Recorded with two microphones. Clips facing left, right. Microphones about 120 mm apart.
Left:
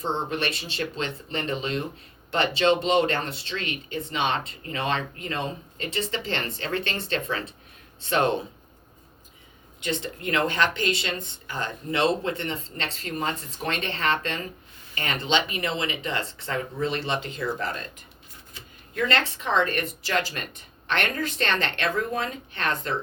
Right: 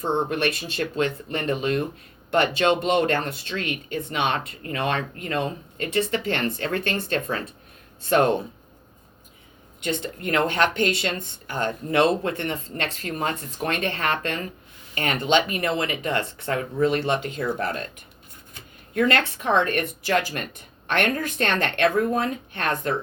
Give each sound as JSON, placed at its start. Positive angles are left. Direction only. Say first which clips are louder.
{"t": 0.0, "sound": "speech", "louder": "right 4 dB", "side_deg": -50}
{"t": 9.8, "sound": "speech", "louder": "right 2 dB", "side_deg": -50}
{"t": 18.5, "sound": "speech", "louder": "right 8 dB", "side_deg": -55}